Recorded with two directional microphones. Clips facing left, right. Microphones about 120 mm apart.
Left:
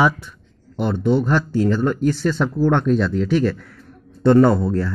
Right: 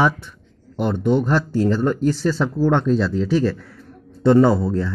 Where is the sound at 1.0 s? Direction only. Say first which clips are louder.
Left 1 dB; 45° right (ahead or behind); by 3.7 s 30° right (ahead or behind).